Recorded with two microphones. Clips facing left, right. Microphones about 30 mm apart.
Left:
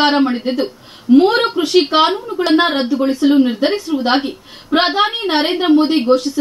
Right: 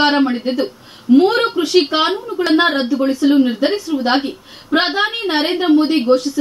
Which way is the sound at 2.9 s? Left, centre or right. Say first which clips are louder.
Left 2 dB; left.